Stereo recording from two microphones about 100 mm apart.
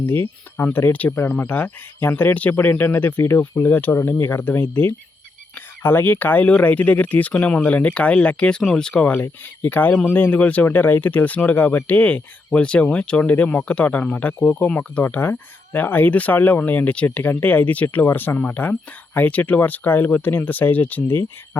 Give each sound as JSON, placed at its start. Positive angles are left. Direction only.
{"t": 0.0, "sound": "speech", "side_deg": 20}